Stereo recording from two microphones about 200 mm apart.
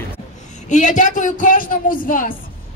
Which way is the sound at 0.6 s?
40° left (ahead or behind).